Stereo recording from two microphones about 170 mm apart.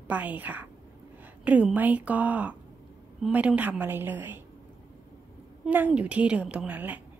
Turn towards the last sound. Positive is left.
turn(degrees=-10)  # may be behind; listen again after turning